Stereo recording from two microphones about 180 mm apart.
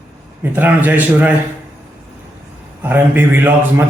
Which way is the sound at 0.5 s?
10° right (ahead or behind).